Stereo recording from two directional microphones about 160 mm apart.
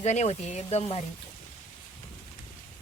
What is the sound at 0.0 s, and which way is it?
Speech, 45° left (ahead or behind).